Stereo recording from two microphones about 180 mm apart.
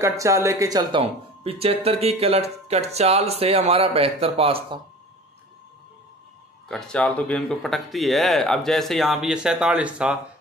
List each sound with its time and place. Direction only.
0.0 s speech: 15° right (ahead or behind)
1.0 s speech: 35° right (ahead or behind)
6.7 s speech: 5° left (ahead or behind)